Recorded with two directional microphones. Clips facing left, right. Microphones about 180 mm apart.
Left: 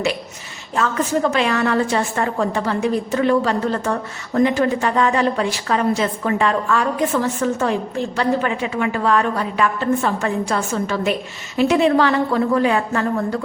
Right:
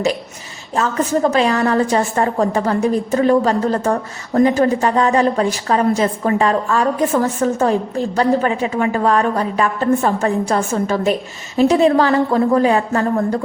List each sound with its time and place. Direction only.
0.8 s a woman's voice: 35° right (ahead or behind)